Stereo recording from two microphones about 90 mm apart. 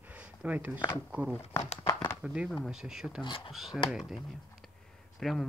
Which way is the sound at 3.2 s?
60° left (ahead or behind).